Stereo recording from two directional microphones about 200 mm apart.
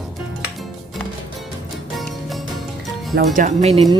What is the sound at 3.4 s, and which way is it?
Speech, 35° right (ahead or behind).